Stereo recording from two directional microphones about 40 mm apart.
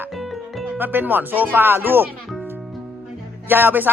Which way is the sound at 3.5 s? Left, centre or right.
Right.